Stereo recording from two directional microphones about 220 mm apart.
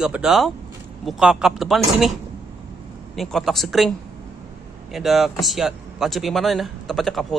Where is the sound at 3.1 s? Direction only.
Centre (ahead or behind).